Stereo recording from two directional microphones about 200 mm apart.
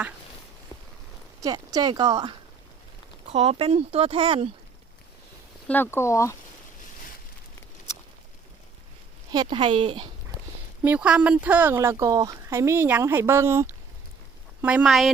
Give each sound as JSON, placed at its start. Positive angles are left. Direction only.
{"t": 0.7, "sound": "a sound", "side_deg": 25}
{"t": 1.4, "sound": "speech", "side_deg": -20}
{"t": 3.3, "sound": "speech", "side_deg": -30}
{"t": 5.6, "sound": "speech", "side_deg": 10}
{"t": 9.3, "sound": "speech", "side_deg": -20}
{"t": 10.8, "sound": "speech", "side_deg": -5}